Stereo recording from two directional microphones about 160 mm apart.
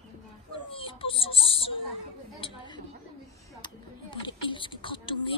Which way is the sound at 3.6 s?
30° left (ahead or behind).